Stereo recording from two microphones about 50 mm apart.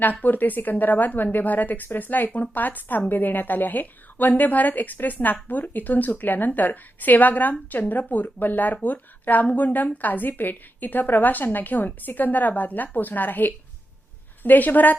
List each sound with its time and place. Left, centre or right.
0.0 s speech: left